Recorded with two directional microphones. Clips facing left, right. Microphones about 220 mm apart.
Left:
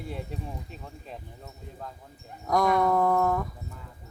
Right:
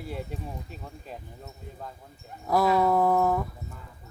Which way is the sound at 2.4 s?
5° right (ahead or behind).